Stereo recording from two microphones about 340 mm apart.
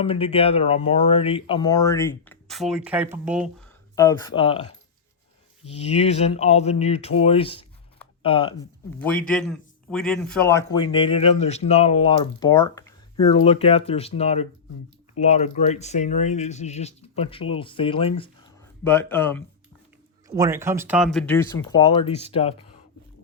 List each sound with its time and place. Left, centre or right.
0.0 s a man's voice: centre
3.9 s a man's voice: centre
5.6 s a man's voice: centre
9.0 s a man's voice: centre
20.2 s speech: centre